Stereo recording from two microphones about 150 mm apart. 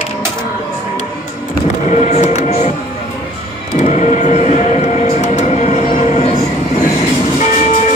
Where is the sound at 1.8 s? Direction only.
50° left (ahead or behind).